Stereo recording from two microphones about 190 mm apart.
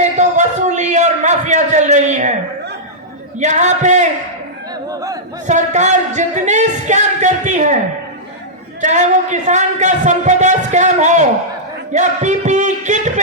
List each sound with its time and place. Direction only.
0.0 s a sound: 40° right (ahead or behind)
3.3 s a sound: 40° right (ahead or behind)
4.9 s speech: 15° right (ahead or behind)
5.5 s singing: 40° right (ahead or behind)
8.8 s speech: 40° right (ahead or behind)
11.9 s music: 40° right (ahead or behind)